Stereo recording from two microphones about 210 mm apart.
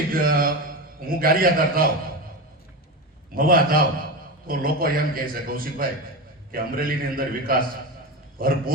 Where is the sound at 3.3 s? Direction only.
45° right (ahead or behind).